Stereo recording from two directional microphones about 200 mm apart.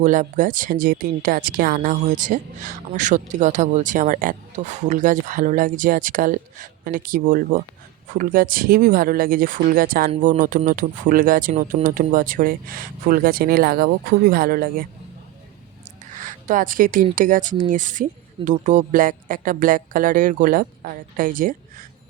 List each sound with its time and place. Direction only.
0.0 s speech: 40° right (ahead or behind)
16.1 s speech: 40° right (ahead or behind)